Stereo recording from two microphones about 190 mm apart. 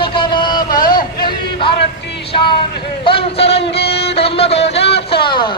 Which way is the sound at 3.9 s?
30° left (ahead or behind).